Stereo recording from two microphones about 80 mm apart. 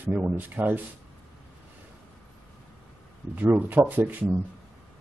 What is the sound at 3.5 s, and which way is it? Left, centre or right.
Speech, right.